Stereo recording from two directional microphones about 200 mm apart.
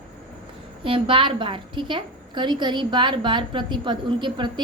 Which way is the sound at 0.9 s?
25° right (ahead or behind).